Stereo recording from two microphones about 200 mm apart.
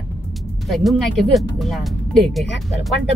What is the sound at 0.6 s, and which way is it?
Speech, centre (ahead or behind).